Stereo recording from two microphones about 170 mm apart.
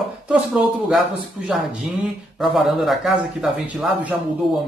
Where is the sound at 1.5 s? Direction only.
Centre (ahead or behind).